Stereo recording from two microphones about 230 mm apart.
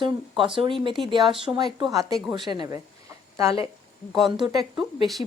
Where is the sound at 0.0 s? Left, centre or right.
Right.